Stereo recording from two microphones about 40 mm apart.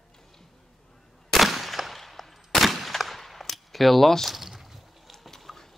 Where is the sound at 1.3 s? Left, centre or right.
Centre.